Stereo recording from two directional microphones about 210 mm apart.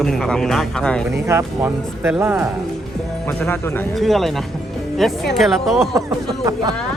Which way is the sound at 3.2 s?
10° left (ahead or behind).